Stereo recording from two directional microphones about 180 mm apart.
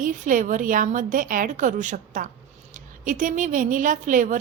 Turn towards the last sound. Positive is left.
turn(degrees=-45)  # may be behind; listen again after turning